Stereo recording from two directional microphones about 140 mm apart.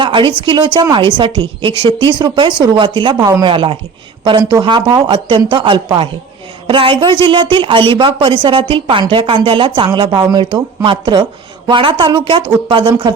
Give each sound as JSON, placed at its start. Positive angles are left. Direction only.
{"t": 0.0, "sound": "a woman's voice", "side_deg": -35}